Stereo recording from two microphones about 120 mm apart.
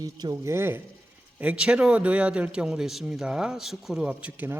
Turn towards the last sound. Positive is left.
turn(degrees=-15)  # may be behind; listen again after turning